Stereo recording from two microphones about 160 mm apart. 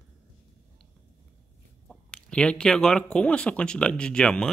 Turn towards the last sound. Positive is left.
turn(degrees=5)  # may be behind; listen again after turning